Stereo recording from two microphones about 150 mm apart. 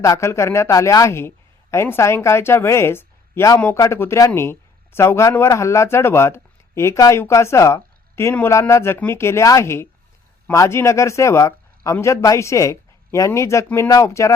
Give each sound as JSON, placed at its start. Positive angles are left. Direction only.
{"t": 0.0, "sound": "speech", "side_deg": 20}